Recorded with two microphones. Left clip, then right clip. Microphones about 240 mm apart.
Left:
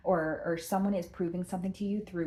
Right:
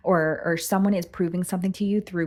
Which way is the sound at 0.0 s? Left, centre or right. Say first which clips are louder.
Right 8 dB; right.